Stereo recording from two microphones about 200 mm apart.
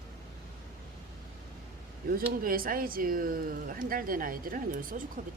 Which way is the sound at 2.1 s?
45° right (ahead or behind).